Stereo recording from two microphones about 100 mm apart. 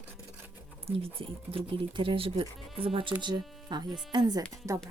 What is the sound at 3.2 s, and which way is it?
Speech, 45° right (ahead or behind).